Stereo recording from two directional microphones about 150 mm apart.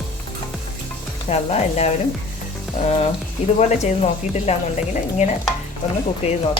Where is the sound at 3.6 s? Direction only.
50° left (ahead or behind).